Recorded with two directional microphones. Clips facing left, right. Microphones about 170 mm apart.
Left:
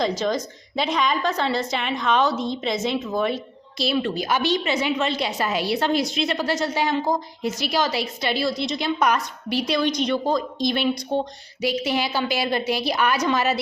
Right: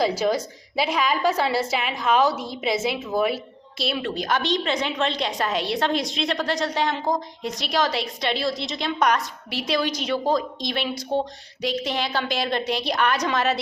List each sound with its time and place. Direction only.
0.0 s a woman's voice: 10° right (ahead or behind)